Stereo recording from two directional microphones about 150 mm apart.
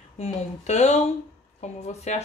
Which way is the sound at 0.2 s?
45° left (ahead or behind).